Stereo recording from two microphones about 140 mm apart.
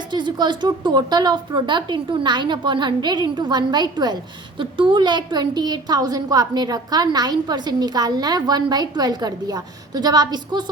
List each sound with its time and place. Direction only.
0.1 s speech: 30° right (ahead or behind)